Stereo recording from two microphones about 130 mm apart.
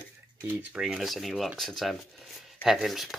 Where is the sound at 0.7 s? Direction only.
5° right (ahead or behind).